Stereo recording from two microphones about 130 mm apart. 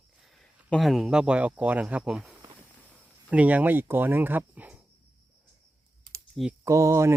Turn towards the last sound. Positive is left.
turn(degrees=-25)  # may be behind; listen again after turning